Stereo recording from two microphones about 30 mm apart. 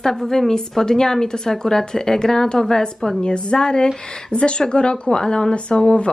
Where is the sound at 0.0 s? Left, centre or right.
Centre.